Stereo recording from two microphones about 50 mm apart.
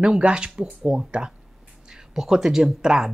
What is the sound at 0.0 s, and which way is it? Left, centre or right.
Speech, centre.